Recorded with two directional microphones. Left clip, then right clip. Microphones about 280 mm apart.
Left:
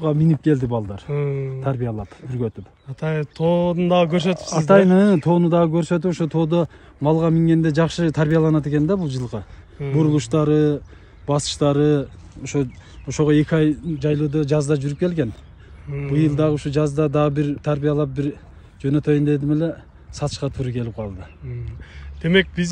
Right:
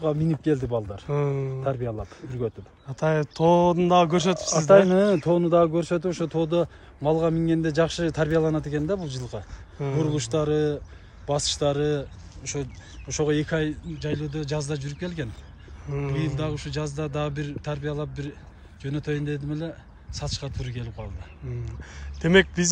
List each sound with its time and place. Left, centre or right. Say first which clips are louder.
0.0 s a man's voice: left 5 dB; left
1.0 s speech: left 2 dB; centre
1.6 s speech: left 2 dB; left
2.9 s speech: right 2 dB; centre
4.6 s a man's voice: left 2 dB; left
22.2 s speech: left 1 dB; centre